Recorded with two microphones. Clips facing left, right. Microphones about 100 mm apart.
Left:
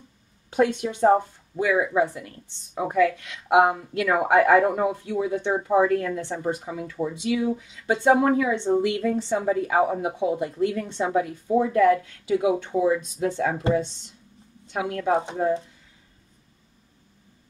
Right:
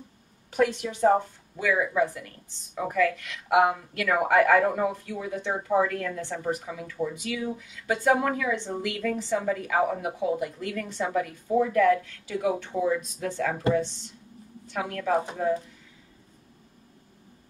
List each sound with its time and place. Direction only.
0.5 s speech: 25° left (ahead or behind)